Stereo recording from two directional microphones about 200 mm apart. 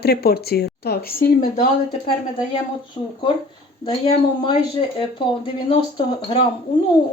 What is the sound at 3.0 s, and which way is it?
Speech, 25° left (ahead or behind).